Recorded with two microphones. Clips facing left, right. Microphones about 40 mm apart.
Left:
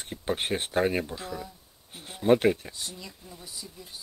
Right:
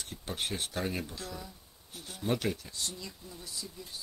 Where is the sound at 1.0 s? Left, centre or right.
Left.